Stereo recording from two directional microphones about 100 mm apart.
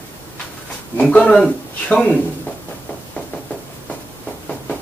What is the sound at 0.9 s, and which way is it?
Speech, 15° left (ahead or behind).